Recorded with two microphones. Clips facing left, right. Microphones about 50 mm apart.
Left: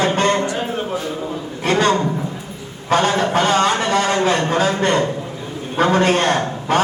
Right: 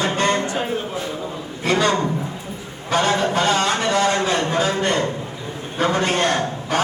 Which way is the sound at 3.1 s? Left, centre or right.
Left.